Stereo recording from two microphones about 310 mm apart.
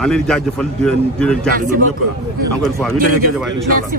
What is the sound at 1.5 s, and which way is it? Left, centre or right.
Speech, right.